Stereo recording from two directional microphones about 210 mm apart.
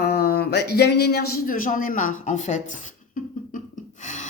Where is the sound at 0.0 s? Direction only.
45° left (ahead or behind).